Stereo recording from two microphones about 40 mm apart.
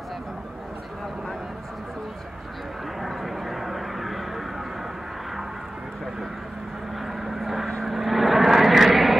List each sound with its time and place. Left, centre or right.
3.0 s vehicle: centre
7.1 s vehicle: centre